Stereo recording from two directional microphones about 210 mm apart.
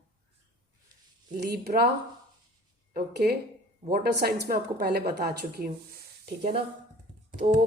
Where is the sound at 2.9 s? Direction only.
50° right (ahead or behind).